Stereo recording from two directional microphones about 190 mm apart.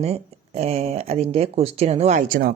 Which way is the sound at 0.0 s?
35° right (ahead or behind).